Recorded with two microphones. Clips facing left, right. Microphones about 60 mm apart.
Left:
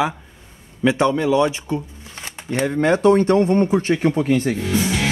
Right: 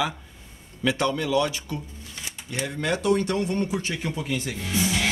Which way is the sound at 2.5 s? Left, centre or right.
Left.